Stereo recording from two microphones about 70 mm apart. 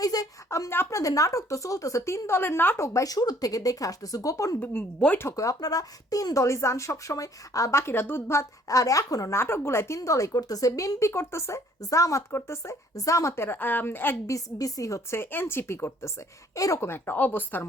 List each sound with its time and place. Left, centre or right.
0.0 s a sound: left
0.5 s speech: left
2.7 s speech: left
4.6 s speech: left
5.4 s speech: left
8.4 s speech: left
9.3 s a woman's voice: left
14.3 s speech: left
15.1 s a woman's voice: left
16.6 s speech: left
16.8 s speech: left